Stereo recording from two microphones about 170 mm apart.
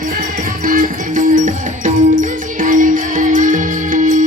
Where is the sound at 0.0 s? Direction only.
50° right (ahead or behind).